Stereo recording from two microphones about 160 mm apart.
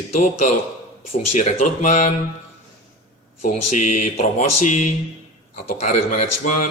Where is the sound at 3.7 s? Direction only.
50° left (ahead or behind).